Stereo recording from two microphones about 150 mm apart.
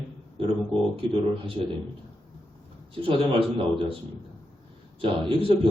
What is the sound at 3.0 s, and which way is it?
Speech, 40° right (ahead or behind).